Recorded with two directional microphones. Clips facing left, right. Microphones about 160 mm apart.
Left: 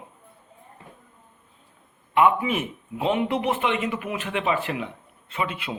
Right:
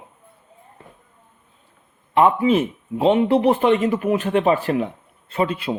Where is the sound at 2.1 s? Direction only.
35° right (ahead or behind).